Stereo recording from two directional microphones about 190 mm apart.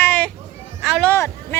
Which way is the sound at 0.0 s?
10° left (ahead or behind).